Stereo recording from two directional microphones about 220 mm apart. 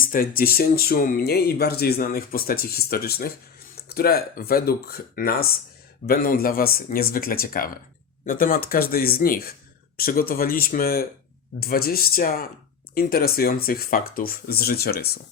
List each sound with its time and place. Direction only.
0.0 s speech: 40° left (ahead or behind)